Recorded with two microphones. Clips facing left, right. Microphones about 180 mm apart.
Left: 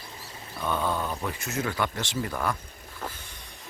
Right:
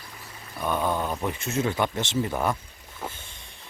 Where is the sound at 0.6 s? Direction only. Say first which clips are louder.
Right 2 dB; 15° right (ahead or behind).